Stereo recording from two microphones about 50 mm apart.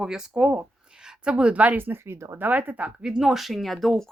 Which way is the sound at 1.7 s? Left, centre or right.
Right.